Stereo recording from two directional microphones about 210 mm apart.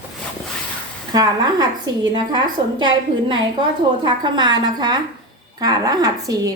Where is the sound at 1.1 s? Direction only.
20° right (ahead or behind).